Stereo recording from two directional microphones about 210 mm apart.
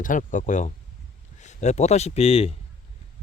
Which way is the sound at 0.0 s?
40° left (ahead or behind).